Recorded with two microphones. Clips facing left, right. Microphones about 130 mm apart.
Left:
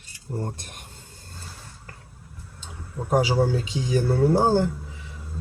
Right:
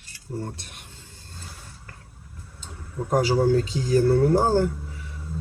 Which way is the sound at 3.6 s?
40° right (ahead or behind).